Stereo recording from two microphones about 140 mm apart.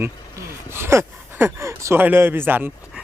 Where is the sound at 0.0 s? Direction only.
15° right (ahead or behind).